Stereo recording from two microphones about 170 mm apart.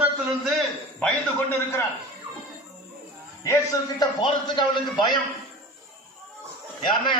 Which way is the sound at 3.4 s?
20° left (ahead or behind).